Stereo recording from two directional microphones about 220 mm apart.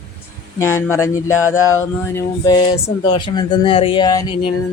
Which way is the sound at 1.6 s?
70° left (ahead or behind).